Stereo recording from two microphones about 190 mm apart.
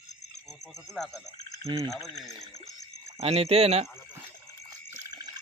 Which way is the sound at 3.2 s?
30° right (ahead or behind).